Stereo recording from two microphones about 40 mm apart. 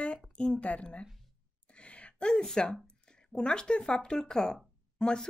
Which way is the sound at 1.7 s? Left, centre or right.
Left.